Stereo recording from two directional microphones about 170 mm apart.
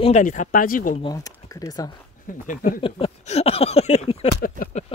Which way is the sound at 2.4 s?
50° left (ahead or behind).